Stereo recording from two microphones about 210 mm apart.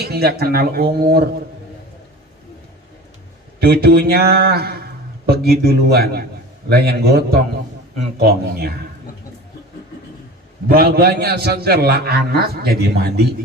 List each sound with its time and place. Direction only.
0.0 s a man's voice: 50° right (ahead or behind)
3.6 s a man's voice: 50° right (ahead or behind)
10.7 s a man's voice: 45° right (ahead or behind)